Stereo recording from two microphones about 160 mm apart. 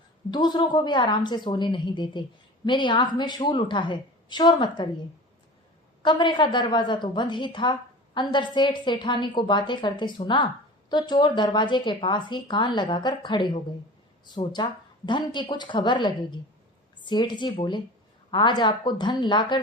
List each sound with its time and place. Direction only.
0.3 s a woman's voice: 25° left (ahead or behind)
6.0 s a woman's voice: 30° left (ahead or behind)